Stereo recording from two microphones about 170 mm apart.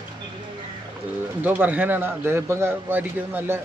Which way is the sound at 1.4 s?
10° right (ahead or behind).